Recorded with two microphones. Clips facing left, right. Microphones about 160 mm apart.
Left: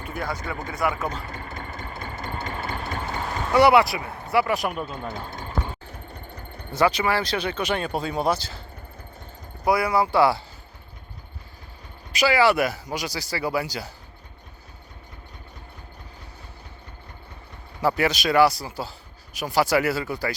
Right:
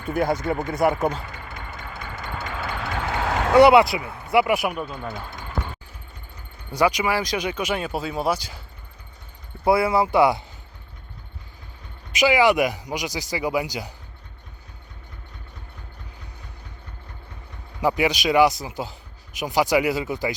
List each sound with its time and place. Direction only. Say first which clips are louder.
0.1 s speech: right 9 dB; 45° right (ahead or behind)
1.1 s a sound: even; 40° left (ahead or behind)
2.7 s a sound: right 3 dB; 90° right
3.5 s speech: right 3 dB; 20° right (ahead or behind); by 4.9 s 5° right (ahead or behind)
6.1 s a sound: left 6 dB; 60° left (ahead or behind)
6.7 s speech: even; 10° right (ahead or behind)
9.6 s speech: right 2 dB; 25° right (ahead or behind)
12.1 s speech: right 2 dB; 20° right (ahead or behind)
17.7 s speech: right 1 dB; 15° right (ahead or behind)